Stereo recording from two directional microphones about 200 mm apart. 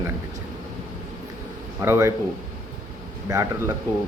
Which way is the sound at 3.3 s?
15° right (ahead or behind).